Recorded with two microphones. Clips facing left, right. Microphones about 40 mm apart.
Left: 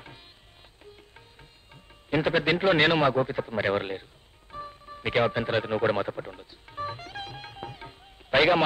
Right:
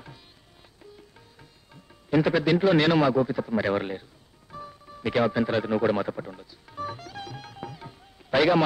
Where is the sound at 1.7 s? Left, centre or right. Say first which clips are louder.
Right 3 dB; left.